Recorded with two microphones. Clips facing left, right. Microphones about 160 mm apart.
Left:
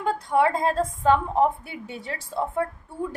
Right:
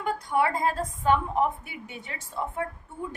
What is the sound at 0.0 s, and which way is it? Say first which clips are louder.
A woman's voice: left 4 dB; 25° left (ahead or behind).